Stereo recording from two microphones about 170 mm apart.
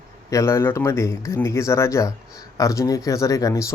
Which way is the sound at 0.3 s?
15° left (ahead or behind).